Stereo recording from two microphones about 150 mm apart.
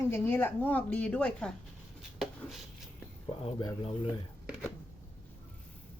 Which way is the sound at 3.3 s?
35° left (ahead or behind).